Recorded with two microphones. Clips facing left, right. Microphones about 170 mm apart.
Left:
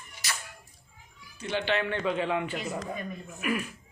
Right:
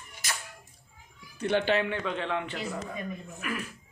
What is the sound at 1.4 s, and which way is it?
Speech, 60° right (ahead or behind).